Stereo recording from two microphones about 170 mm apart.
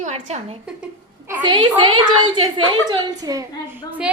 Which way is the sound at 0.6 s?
10° right (ahead or behind).